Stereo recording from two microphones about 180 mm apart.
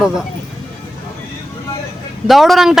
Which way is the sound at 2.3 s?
Centre (ahead or behind).